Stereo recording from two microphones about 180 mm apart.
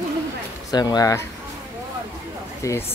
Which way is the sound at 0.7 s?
20° left (ahead or behind).